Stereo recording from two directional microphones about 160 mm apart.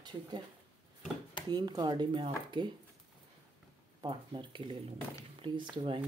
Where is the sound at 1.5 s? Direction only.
25° right (ahead or behind).